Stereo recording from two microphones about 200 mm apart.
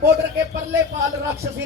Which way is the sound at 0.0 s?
15° right (ahead or behind).